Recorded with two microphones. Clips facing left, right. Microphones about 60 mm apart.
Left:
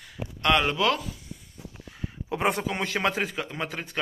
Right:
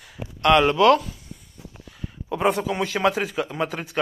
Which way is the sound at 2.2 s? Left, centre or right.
Centre.